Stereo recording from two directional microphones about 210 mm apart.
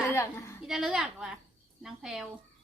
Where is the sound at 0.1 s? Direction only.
15° left (ahead or behind).